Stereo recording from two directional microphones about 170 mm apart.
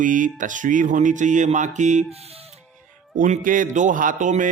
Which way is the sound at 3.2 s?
50° right (ahead or behind).